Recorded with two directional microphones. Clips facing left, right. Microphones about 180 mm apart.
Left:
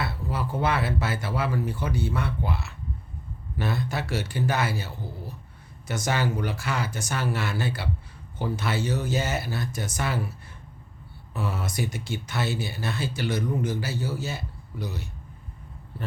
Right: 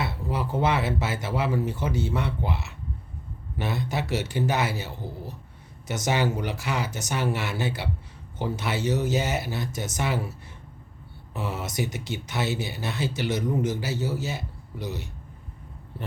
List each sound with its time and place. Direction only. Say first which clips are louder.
0.0 s speech: right 1 dB; 20° right (ahead or behind)
11.3 s speech: even; 20° right (ahead or behind)